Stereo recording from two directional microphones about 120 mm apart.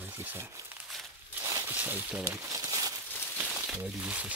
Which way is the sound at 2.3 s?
25° right (ahead or behind).